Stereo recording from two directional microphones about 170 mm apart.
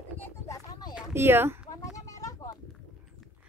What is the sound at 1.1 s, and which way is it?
Speech, 15° right (ahead or behind).